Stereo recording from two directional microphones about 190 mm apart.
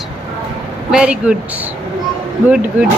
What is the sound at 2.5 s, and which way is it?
Speech, 5° right (ahead or behind).